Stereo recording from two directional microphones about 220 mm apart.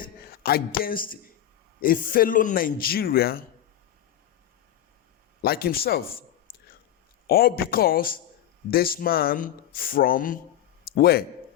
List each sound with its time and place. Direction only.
0.0 s speech: 45° left (ahead or behind)
5.4 s speech: 45° left (ahead or behind)
7.3 s speech: 45° left (ahead or behind)